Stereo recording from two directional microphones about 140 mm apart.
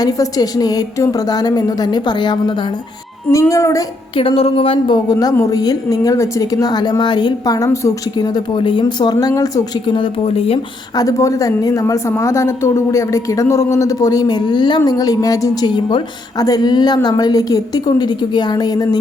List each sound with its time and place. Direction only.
0.0 s speech: 25° left (ahead or behind)
3.2 s speech: 15° left (ahead or behind)
4.2 s speech: 40° left (ahead or behind)
10.9 s speech: 25° left (ahead or behind)